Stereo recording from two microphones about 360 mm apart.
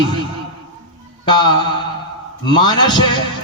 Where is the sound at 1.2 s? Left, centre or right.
Centre.